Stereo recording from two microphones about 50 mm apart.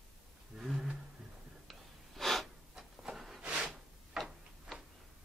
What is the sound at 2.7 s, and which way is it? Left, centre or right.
Printer, centre.